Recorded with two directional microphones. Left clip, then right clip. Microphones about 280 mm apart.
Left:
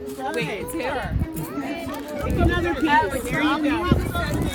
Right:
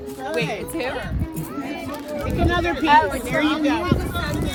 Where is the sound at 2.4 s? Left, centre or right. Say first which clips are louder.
Right 4 dB; centre.